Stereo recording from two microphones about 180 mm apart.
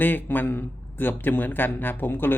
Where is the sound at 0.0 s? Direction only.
10° left (ahead or behind).